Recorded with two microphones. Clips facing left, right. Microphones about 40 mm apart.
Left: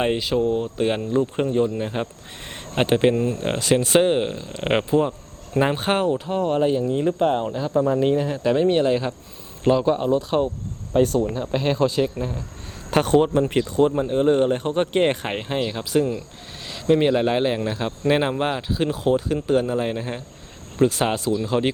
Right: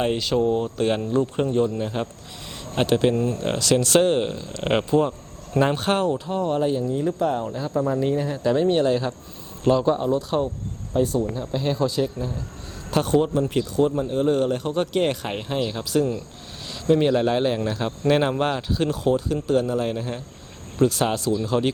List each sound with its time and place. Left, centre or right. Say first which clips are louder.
0.0 s speech: left 1 dB; centre
6.8 s speech: left 3 dB; left
7.6 s speech: left 3 dB; centre
10.0 s speech: left 2 dB; left
10.9 s speech: left 3 dB; left
13.8 s speech: left 3 dB; left
18.9 s speech: left 1 dB; left
19.8 s speech: left 1 dB; centre